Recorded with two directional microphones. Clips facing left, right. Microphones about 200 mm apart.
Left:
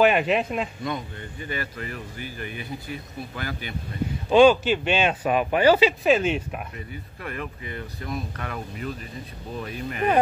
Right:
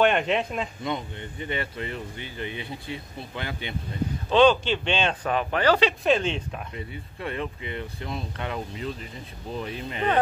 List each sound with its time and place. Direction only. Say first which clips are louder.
0.0 s speech: left 2 dB; 5° left (ahead or behind)
0.8 s speech: even; 25° right (ahead or behind)
4.3 s speech: left 3 dB; 10° left (ahead or behind)
6.9 s speech: right 2 dB; 25° right (ahead or behind)